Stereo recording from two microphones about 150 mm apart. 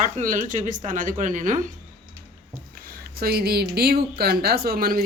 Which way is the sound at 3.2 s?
90° right.